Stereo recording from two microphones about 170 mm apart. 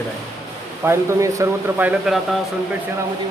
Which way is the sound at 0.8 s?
15° right (ahead or behind).